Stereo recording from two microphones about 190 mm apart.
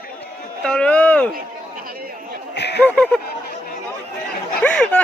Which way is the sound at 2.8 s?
5° left (ahead or behind).